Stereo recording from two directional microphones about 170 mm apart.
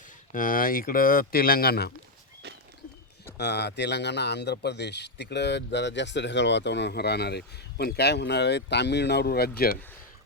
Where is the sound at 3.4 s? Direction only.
80° left; by 9.8 s 65° left (ahead or behind).